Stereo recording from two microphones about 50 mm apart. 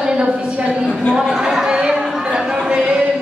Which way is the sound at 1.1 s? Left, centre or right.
Centre.